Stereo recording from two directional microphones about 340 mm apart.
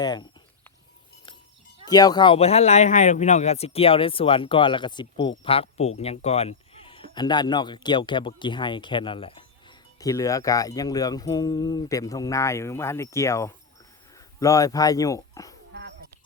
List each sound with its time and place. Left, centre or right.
0.0 s speech: centre
1.8 s speech: centre
15.7 s a sound: right